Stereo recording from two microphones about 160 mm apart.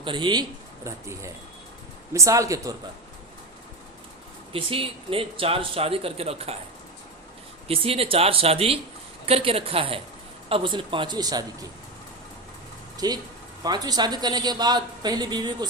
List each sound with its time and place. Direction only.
0.0 s a man's voice: 30° right (ahead or behind)
0.9 s a man's voice: 20° right (ahead or behind)
4.5 s speech: 35° right (ahead or behind)
7.7 s speech: 35° right (ahead or behind)
13.0 s a man's voice: 25° right (ahead or behind)